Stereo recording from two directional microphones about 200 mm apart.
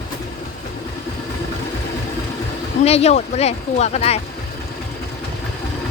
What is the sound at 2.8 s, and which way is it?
Speech, 30° left (ahead or behind).